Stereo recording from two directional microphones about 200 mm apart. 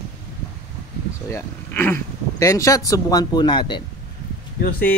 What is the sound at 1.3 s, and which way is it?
Speech, 10° left (ahead or behind).